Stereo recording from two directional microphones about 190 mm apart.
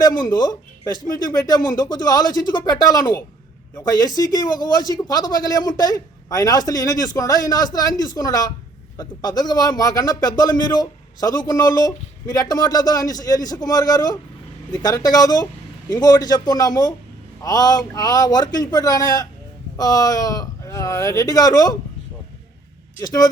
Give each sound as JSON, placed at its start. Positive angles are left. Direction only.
{"t": 0.2, "sound": "speech", "side_deg": 20}
{"t": 23.0, "sound": "speech", "side_deg": 20}